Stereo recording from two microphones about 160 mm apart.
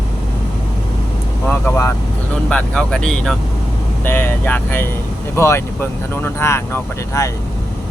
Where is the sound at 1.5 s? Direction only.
15° left (ahead or behind).